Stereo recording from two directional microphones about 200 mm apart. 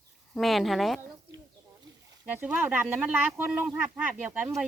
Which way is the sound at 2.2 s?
10° right (ahead or behind).